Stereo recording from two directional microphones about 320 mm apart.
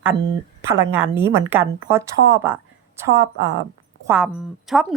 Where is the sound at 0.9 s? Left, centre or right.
Centre.